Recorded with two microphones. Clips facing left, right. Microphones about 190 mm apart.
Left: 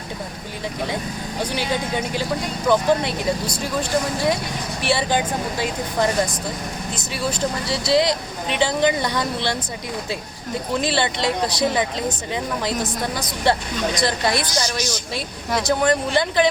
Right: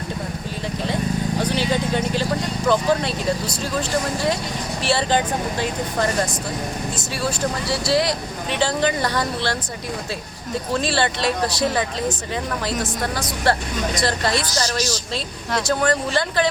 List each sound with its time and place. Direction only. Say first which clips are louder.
1.4 s vehicle: even; 15° left (ahead or behind)
2.6 s speech: left 1 dB; 15° left (ahead or behind)
10.8 s speech: even; 15° left (ahead or behind)